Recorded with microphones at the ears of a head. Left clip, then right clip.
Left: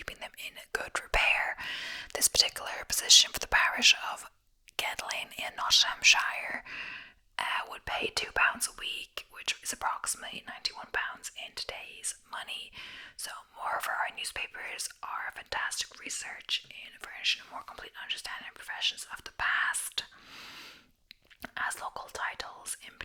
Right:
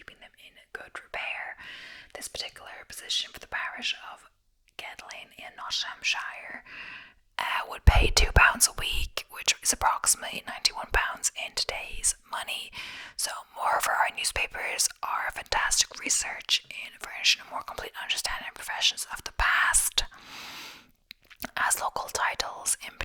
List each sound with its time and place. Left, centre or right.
0.0 s whispering: left
4.8 s speech: left
7.9 s speech: right